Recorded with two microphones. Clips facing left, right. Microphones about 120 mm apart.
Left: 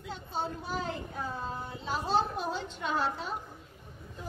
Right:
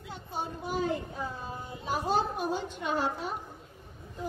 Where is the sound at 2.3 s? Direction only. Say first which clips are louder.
Right 2 dB; 50° right (ahead or behind).